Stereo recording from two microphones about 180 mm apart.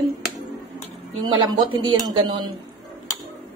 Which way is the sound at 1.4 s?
25° right (ahead or behind).